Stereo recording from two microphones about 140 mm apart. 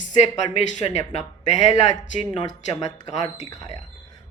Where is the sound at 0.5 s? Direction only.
55° left (ahead or behind).